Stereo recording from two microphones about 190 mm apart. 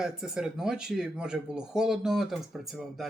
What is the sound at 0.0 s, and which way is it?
Speech, 5° right (ahead or behind).